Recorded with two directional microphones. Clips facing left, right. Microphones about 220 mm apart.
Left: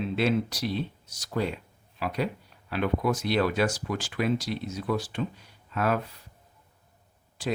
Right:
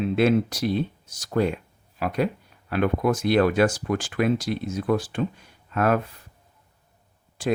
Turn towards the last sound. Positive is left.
turn(degrees=-50)  # may be behind; listen again after turning